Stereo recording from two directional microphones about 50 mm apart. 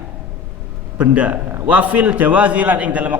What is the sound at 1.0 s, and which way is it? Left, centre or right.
A man's voice, right.